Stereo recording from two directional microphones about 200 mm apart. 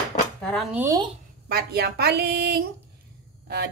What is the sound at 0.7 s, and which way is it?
Speech, 10° right (ahead or behind).